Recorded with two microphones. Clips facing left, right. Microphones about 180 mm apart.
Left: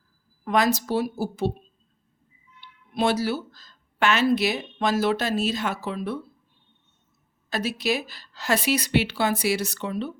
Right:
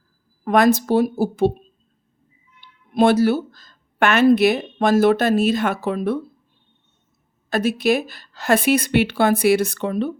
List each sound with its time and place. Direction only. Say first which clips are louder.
0.4 s a woman's voice: right 7 dB; 50° right (ahead or behind)
2.6 s a woman's voice: right 8 dB; 50° right (ahead or behind)
7.5 s a woman's voice: right 7 dB; 50° right (ahead or behind)